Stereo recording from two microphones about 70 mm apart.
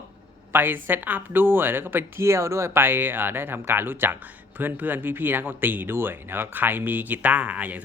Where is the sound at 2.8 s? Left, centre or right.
Right.